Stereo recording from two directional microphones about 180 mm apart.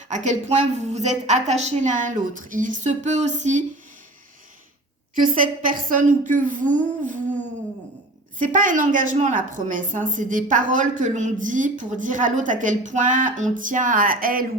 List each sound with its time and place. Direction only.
0.1 s a woman's voice: 40° right (ahead or behind)
5.2 s a woman's voice: 50° right (ahead or behind)
8.4 s a woman's voice: 45° right (ahead or behind)